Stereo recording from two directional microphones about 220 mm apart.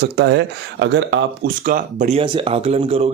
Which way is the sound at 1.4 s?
40° right (ahead or behind).